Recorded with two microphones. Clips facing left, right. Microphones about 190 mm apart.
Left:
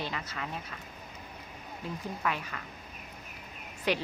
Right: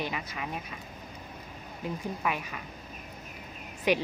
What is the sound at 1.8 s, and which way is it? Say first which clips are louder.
Speech: right 2 dB; 15° right (ahead or behind).